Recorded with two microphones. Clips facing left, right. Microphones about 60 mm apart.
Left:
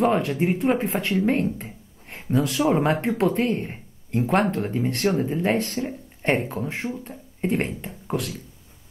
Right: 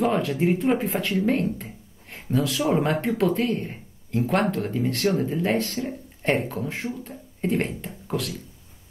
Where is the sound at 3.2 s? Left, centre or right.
Centre.